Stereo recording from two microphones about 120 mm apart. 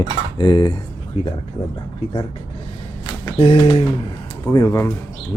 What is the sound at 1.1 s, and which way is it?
Speech, 55° left (ahead or behind).